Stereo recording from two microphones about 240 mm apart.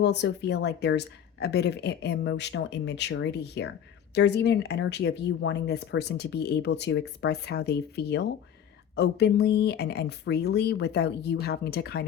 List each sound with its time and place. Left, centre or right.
0.0 s speech: left